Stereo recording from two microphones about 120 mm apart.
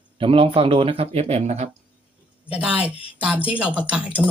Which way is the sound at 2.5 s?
10° right (ahead or behind).